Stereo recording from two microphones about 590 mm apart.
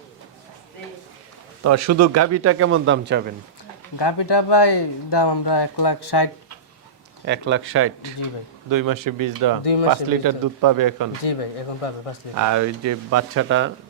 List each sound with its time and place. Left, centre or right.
1.6 s a man's voice: right
3.9 s speech: left
7.3 s a man's voice: centre
8.7 s speech: right
11.2 s speech: left
12.3 s a man's voice: right